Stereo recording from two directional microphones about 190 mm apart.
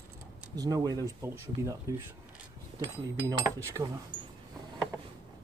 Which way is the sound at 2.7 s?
20° right (ahead or behind).